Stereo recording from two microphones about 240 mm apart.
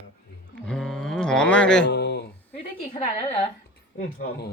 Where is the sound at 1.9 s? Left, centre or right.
Left.